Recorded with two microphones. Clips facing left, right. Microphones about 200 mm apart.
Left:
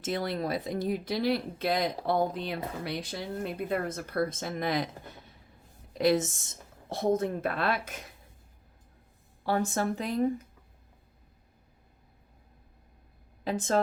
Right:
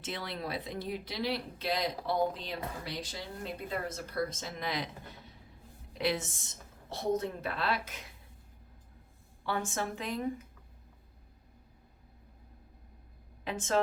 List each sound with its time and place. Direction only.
0.0 s a woman's voice: 45° left (ahead or behind)
9.5 s speech: 40° left (ahead or behind)
13.4 s a woman's voice: 35° left (ahead or behind)